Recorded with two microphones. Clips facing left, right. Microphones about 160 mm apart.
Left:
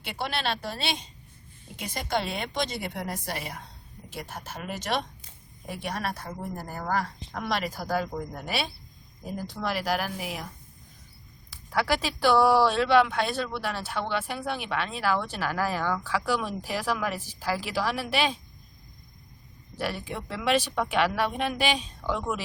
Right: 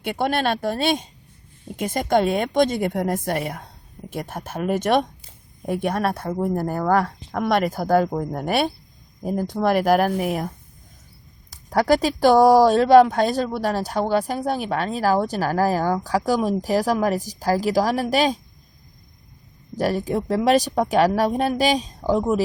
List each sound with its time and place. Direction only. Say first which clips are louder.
0.0 s speech: right 9 dB; 50° right (ahead or behind)
11.5 s speech: right 9 dB; 45° right (ahead or behind)
19.7 s speech: right 10 dB; 40° right (ahead or behind)